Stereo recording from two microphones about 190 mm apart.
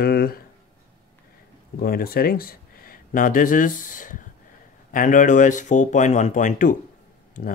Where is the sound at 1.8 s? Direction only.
50° left (ahead or behind).